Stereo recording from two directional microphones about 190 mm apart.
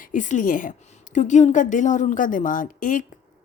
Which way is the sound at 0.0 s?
45° left (ahead or behind).